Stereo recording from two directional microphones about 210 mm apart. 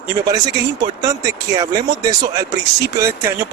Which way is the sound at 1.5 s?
15° right (ahead or behind).